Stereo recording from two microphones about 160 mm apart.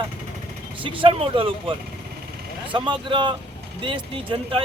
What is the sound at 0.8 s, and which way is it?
Speech, 30° right (ahead or behind).